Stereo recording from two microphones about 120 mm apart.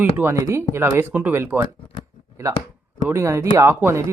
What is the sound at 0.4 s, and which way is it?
Speech, 20° right (ahead or behind).